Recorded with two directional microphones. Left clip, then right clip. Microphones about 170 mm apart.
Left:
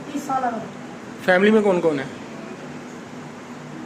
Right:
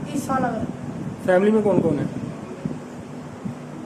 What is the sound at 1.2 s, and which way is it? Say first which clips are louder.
Speech: left 2 dB; centre (ahead or behind).